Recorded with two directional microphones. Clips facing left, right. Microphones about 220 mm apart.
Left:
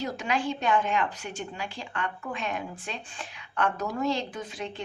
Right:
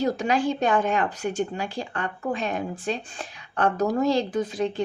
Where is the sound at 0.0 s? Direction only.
40° right (ahead or behind).